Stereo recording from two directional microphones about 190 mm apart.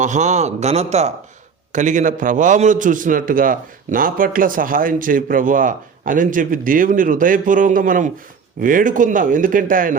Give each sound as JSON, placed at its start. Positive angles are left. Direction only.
{"t": 0.0, "sound": "a man's voice", "side_deg": -40}